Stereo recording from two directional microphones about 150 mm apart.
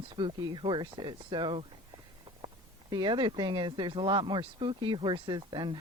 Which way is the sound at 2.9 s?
30° right (ahead or behind).